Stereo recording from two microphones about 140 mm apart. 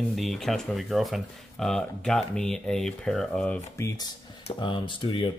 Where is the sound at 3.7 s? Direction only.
25° left (ahead or behind).